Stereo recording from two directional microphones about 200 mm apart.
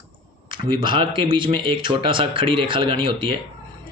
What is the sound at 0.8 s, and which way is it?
A man's voice, 25° right (ahead or behind).